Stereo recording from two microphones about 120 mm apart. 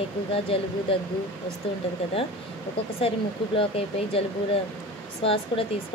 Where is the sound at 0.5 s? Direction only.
50° left (ahead or behind).